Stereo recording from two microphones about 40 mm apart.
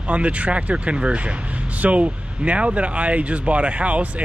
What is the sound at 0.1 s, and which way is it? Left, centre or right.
Speech, right.